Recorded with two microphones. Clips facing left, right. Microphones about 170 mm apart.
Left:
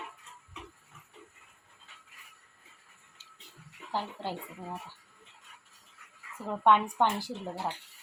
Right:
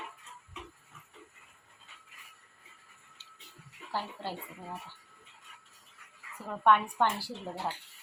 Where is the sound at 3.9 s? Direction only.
15° left (ahead or behind).